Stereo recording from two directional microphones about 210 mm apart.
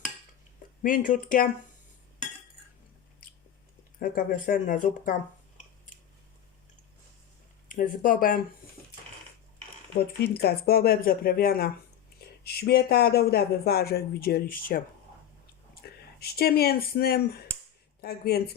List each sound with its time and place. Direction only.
0.8 s speech: 40° left (ahead or behind)
4.0 s speech: 40° left (ahead or behind)
7.7 s speech: 40° left (ahead or behind)
10.2 s speech: 50° left (ahead or behind)